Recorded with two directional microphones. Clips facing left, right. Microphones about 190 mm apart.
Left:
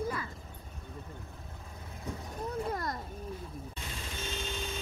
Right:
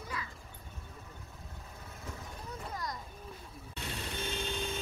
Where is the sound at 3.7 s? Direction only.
60° right (ahead or behind).